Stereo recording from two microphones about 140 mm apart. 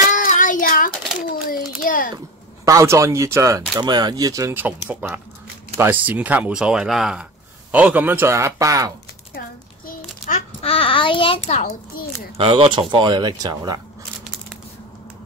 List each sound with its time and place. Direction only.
0.1 s child singing: 70° left (ahead or behind)
1.7 s a sound: 85° left
2.6 s speech: 20° right (ahead or behind)
4.6 s speech: 15° right (ahead or behind)
9.8 s a sound: 85° left
10.6 s a child's voice: 40° left (ahead or behind)
12.4 s speech: 40° right (ahead or behind)